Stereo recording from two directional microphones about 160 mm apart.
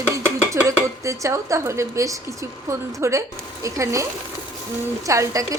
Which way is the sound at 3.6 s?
20° right (ahead or behind).